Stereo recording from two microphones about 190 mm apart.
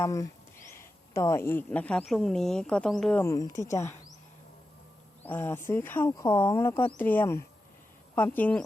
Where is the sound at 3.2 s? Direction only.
15° left (ahead or behind).